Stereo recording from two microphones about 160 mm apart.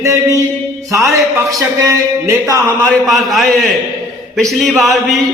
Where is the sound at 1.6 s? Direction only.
20° right (ahead or behind).